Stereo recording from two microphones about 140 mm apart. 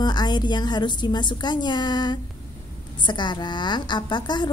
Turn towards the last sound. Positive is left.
turn(degrees=30)  # may be behind; listen again after turning